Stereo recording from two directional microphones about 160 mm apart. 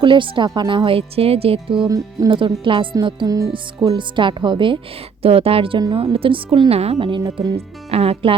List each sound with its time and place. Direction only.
0.0 s speech: 30° right (ahead or behind)